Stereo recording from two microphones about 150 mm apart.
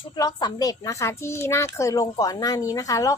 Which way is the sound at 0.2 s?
30° left (ahead or behind).